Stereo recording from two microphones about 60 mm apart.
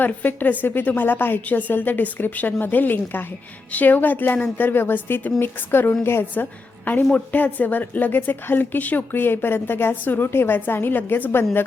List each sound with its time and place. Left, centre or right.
0.0 s a woman's voice: left